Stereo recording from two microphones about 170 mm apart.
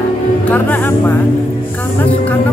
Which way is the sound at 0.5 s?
10° left (ahead or behind).